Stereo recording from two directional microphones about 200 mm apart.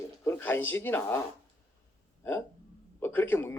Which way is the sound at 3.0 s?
10° left (ahead or behind).